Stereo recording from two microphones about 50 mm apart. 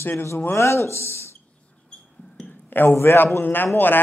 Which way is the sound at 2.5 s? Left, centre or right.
Left.